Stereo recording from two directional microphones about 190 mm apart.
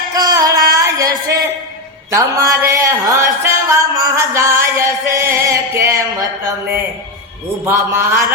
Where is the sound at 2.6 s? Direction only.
15° right (ahead or behind).